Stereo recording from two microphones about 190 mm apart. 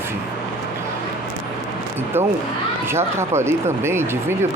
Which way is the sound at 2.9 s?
15° right (ahead or behind).